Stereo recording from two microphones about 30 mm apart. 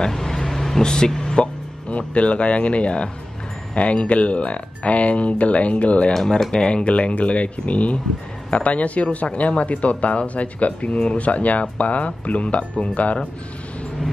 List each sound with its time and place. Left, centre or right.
0.1 s vehicle: centre
0.8 s speech: left
1.9 s speech: left
6.1 s speech: left
6.5 s speech: left